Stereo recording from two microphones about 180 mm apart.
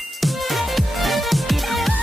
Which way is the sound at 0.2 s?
Centre (ahead or behind).